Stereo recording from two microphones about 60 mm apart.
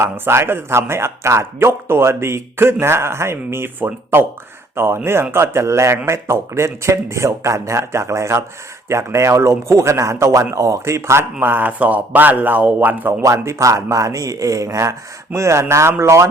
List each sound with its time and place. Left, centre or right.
0.0 s speech: right
11.3 s a man's voice: right
13.2 s speech: right